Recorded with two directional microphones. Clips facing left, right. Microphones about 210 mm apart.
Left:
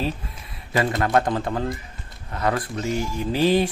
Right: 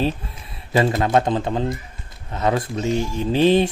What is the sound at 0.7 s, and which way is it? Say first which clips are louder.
Speech: right 3 dB; 25° right (ahead or behind).